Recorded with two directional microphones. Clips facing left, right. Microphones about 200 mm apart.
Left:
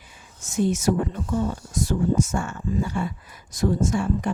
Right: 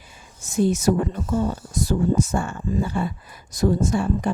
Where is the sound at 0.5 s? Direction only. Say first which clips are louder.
Right 2 dB; 35° right (ahead or behind).